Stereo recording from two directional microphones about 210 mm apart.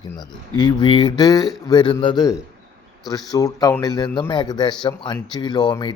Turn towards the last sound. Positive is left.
turn(degrees=20)  # may be behind; listen again after turning